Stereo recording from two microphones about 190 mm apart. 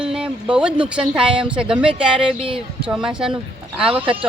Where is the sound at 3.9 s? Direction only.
30° right (ahead or behind).